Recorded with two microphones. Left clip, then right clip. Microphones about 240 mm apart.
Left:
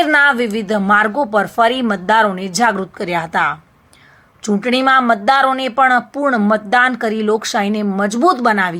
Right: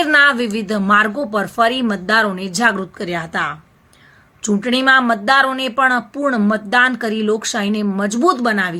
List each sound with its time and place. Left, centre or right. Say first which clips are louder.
0.0 s a woman's voice: left 1 dB; centre